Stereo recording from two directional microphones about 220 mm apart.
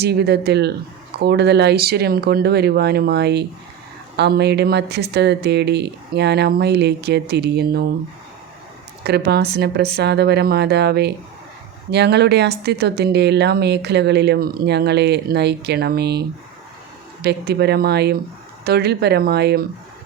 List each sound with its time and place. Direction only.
0.0 s speech: 50° right (ahead or behind)
9.0 s speech: 50° right (ahead or behind)
17.2 s speech: 50° right (ahead or behind)